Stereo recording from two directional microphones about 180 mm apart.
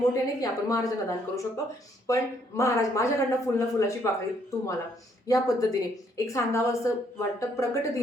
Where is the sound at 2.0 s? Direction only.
15° left (ahead or behind).